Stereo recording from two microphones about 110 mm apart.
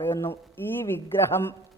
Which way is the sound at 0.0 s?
25° left (ahead or behind).